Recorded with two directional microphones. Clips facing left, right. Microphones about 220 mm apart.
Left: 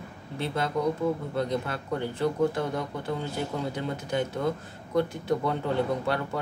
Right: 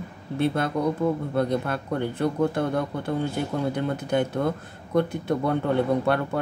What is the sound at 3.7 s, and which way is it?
Speech, 55° right (ahead or behind).